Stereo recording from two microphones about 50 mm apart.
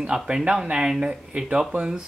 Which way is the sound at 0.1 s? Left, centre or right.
Centre.